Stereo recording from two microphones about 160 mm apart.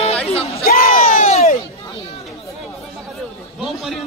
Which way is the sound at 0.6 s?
60° left (ahead or behind).